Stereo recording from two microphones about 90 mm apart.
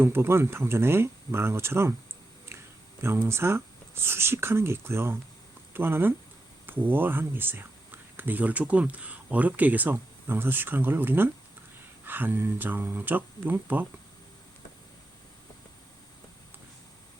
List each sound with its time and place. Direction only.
0.0 s speech: 25° right (ahead or behind)
2.5 s a sound: 30° right (ahead or behind)
3.0 s speech: 30° right (ahead or behind)